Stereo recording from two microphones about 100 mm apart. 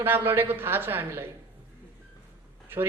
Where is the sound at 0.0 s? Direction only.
20° right (ahead or behind).